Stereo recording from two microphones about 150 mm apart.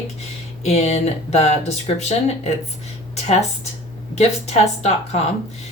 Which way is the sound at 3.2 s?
45° left (ahead or behind).